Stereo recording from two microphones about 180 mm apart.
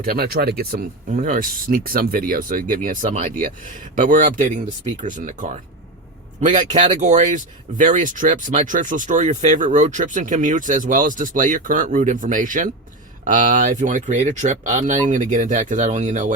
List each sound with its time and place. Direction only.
0.0 s speech: 55° right (ahead or behind)